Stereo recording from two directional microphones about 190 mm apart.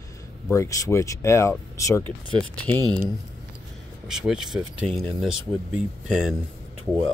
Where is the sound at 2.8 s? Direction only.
20° right (ahead or behind).